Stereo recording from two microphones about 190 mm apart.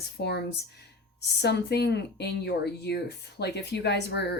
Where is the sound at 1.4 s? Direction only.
60° left (ahead or behind).